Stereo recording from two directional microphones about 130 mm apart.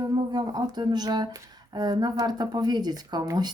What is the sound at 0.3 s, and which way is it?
Speech, 35° right (ahead or behind).